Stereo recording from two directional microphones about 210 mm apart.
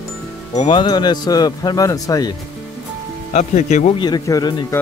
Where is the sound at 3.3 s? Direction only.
35° left (ahead or behind).